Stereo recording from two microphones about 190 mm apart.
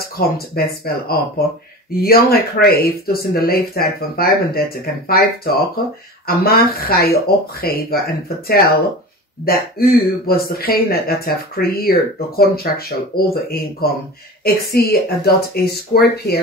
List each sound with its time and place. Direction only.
0.2 s speech: 50° left (ahead or behind)